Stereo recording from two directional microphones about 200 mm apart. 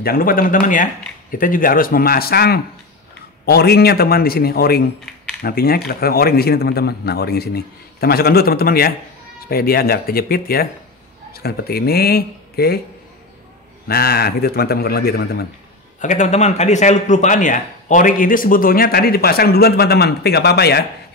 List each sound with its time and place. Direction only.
0.0 s a man's voice: 45° left (ahead or behind)
13.8 s a man's voice: 50° left (ahead or behind)
16.0 s a man's voice: 40° left (ahead or behind); by 20.8 s 55° left (ahead or behind)